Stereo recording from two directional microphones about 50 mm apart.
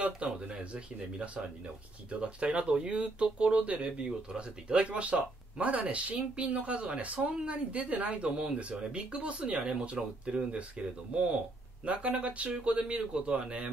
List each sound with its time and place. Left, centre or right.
0.0 s speech: right